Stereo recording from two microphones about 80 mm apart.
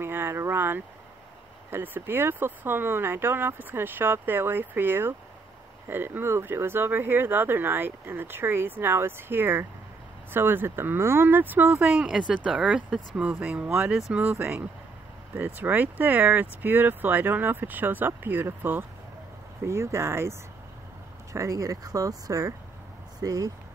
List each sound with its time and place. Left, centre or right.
0.0 s speech: right
12.1 s speech: centre; by 23.5 s right